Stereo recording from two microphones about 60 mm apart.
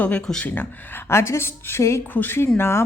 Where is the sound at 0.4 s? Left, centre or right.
Left.